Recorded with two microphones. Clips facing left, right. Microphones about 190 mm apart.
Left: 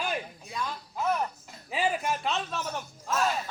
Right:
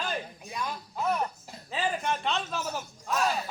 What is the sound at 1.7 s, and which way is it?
Speech, 10° left (ahead or behind).